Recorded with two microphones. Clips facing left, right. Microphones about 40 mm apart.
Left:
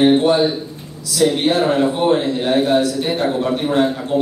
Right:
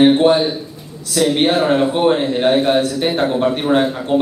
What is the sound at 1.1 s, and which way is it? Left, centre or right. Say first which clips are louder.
A man's voice: right 1 dB; right.